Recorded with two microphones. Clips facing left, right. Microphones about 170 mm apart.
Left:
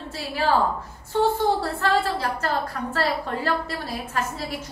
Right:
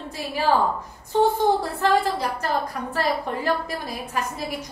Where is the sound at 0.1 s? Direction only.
15° right (ahead or behind).